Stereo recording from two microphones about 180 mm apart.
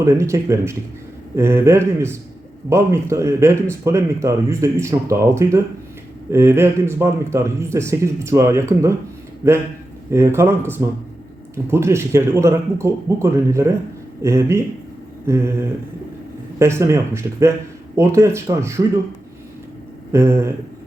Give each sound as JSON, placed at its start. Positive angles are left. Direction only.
{"t": 0.0, "sound": "speech", "side_deg": -15}
{"t": 20.1, "sound": "speech", "side_deg": -15}